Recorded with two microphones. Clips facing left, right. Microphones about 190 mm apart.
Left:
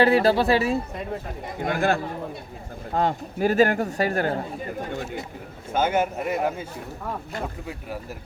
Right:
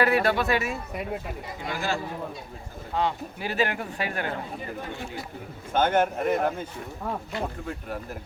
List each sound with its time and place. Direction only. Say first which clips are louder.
0.0 s a man's voice: left 5 dB; 30° left (ahead or behind)
1.5 s a man's voice: left 7 dB; 55° left (ahead or behind)
5.7 s a man's voice: even; 5° left (ahead or behind)